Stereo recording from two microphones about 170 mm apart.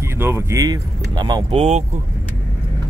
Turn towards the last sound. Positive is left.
turn(degrees=-40)  # may be behind; listen again after turning